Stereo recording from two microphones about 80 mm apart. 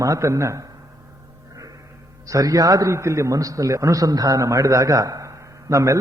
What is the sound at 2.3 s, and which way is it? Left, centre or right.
A man's voice, right.